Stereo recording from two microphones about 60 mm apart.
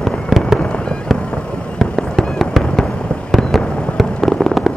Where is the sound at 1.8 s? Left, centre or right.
Centre.